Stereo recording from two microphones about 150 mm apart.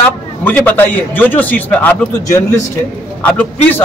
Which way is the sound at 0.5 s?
10° left (ahead or behind).